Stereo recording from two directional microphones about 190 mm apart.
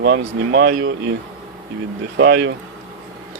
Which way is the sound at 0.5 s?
65° right (ahead or behind).